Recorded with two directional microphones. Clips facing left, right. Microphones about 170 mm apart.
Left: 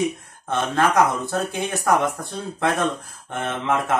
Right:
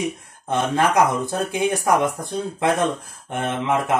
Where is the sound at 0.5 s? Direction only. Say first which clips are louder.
Right 1 dB; 15° right (ahead or behind).